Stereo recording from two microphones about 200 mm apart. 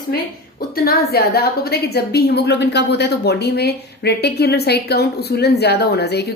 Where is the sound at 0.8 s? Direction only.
50° left (ahead or behind).